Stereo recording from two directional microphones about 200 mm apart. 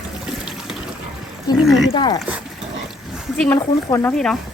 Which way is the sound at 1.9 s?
20° left (ahead or behind).